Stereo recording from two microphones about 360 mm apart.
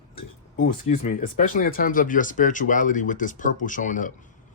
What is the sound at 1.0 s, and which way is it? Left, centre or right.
Speech, left.